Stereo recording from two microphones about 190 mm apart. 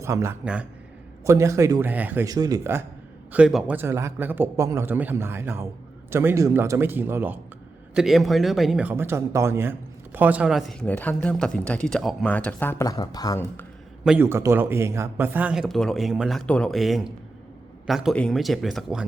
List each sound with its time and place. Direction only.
0.0 s a man's voice: 15° right (ahead or behind); by 13.7 s 15° left (ahead or behind)
14.0 s speech: 5° right (ahead or behind)